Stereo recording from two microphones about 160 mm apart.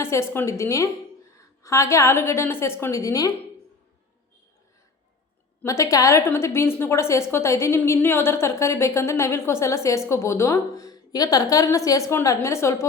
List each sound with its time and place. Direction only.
0.0 s a woman's voice: 15° left (ahead or behind)
5.6 s a woman's voice: 20° left (ahead or behind)